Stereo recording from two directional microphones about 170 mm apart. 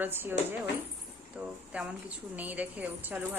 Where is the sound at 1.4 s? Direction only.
10° right (ahead or behind).